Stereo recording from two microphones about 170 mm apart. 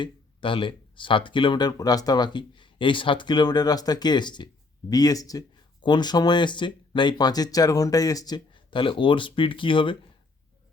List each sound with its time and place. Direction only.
0.0 s speech: 30° left (ahead or behind)